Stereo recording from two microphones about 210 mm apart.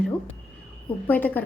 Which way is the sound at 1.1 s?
10° left (ahead or behind).